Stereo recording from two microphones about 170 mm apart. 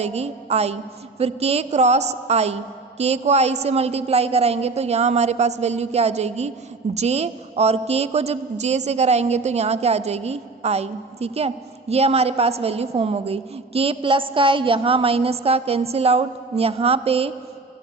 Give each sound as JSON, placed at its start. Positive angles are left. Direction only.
{"t": 0.0, "sound": "a woman's voice", "side_deg": -40}